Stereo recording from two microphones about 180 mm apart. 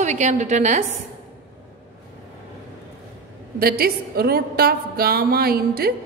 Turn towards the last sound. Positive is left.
turn(degrees=-60)  # may be behind; listen again after turning